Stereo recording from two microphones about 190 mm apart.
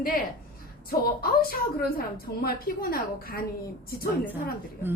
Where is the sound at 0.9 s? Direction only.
50° left (ahead or behind).